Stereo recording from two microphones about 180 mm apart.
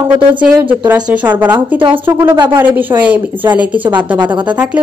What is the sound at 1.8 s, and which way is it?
Speech, 30° right (ahead or behind).